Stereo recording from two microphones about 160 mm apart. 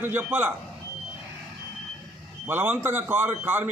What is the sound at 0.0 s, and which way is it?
Speech, 15° right (ahead or behind).